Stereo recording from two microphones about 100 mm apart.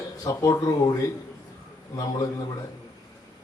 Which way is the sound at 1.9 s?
40° left (ahead or behind).